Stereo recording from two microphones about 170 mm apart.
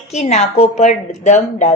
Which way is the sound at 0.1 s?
40° left (ahead or behind).